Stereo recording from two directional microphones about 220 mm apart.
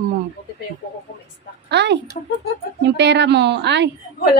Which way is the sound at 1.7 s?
50° right (ahead or behind).